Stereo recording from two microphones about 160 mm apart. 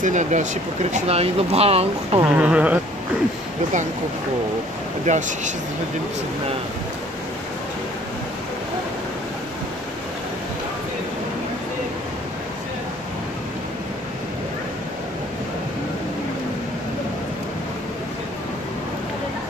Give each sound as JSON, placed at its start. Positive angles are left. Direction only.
{"t": 0.0, "sound": "speech", "side_deg": -50}
{"t": 2.2, "sound": "speech", "side_deg": -10}
{"t": 5.0, "sound": "speech", "side_deg": -50}